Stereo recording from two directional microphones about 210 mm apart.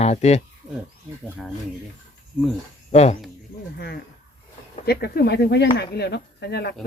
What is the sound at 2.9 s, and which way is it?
Speech, 30° left (ahead or behind).